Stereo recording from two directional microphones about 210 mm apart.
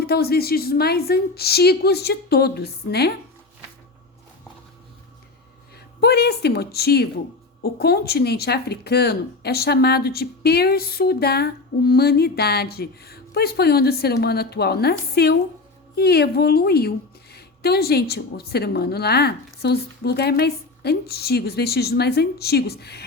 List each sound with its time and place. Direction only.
0.0 s speech: 50° left (ahead or behind)
6.0 s speech: 50° left (ahead or behind)